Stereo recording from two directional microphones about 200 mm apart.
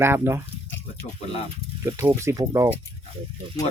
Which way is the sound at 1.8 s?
10° right (ahead or behind).